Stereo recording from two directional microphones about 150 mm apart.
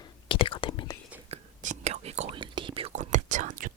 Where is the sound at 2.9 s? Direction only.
55° right (ahead or behind).